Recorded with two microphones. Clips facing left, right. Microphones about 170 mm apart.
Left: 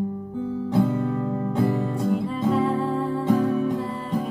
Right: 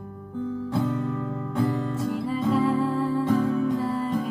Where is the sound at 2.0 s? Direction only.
Centre (ahead or behind).